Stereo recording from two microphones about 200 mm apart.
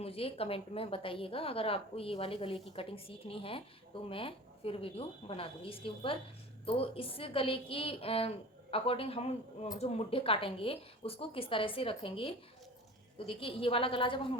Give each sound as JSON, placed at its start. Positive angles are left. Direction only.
{"t": 0.0, "sound": "speech", "side_deg": 30}